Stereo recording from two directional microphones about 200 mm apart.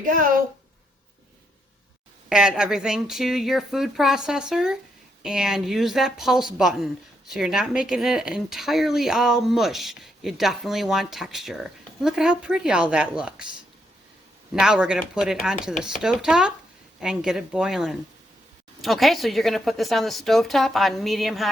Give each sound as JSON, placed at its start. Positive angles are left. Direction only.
{"t": 0.0, "sound": "speech", "side_deg": -40}
{"t": 2.3, "sound": "speech", "side_deg": -5}
{"t": 14.5, "sound": "speech", "side_deg": -5}